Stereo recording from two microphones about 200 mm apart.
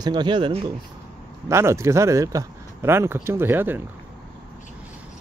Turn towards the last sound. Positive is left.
turn(degrees=-10)  # may be behind; listen again after turning